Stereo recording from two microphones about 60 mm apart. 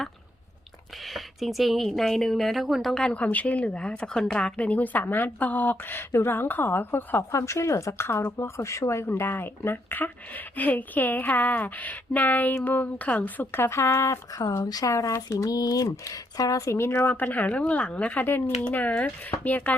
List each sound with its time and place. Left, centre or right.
1.0 s speech: centre
2.9 s a woman's voice: centre; by 7.3 s left
7.3 s speech: left
7.9 s a woman's voice: left
9.0 s a woman's voice: left
14.6 s speech: left
15.4 s speech: left
16.7 s a woman's voice: left
17.1 s a woman's voice: left